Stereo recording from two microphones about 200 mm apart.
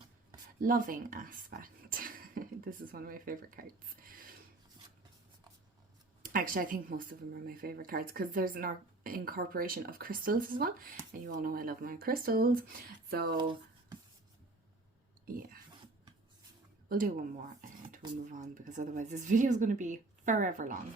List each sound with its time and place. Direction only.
0.6 s speech: 45° right (ahead or behind)
4.0 s filing: 45° right (ahead or behind)
6.2 s speech: 45° right (ahead or behind)
13.3 s a sound: 25° right (ahead or behind)
15.3 s a sound: 45° right (ahead or behind)
16.9 s speech: 45° right (ahead or behind)